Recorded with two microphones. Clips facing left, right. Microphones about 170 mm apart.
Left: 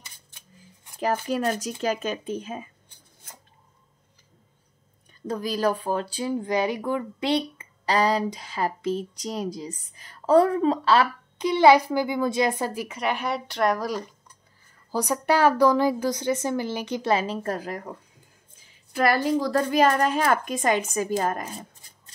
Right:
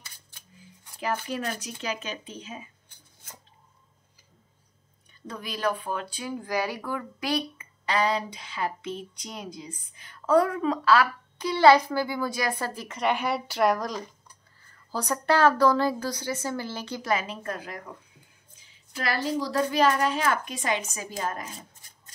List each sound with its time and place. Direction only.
0.9 s speech: 40° left (ahead or behind)
5.2 s speech: 40° left (ahead or behind); by 12.8 s 15° left (ahead or behind)
12.8 s speech: 5° left (ahead or behind)
13.8 s a woman's voice: 10° left (ahead or behind)
17.1 s speech: 35° left (ahead or behind)
18.9 s speech: 55° left (ahead or behind)